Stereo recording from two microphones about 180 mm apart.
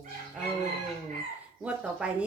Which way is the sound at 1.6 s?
5° right (ahead or behind).